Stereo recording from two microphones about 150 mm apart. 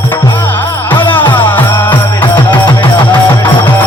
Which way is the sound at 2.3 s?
30° left (ahead or behind).